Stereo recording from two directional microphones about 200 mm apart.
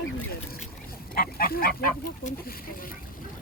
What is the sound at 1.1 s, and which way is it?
Speech, 45° left (ahead or behind).